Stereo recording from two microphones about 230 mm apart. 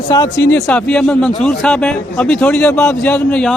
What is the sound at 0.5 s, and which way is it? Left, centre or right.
A man's voice, centre.